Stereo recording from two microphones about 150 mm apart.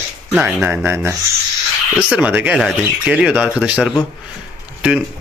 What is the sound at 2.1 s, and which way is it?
Speech, 10° right (ahead or behind).